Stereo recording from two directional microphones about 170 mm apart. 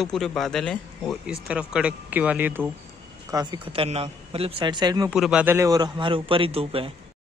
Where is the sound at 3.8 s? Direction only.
35° right (ahead or behind).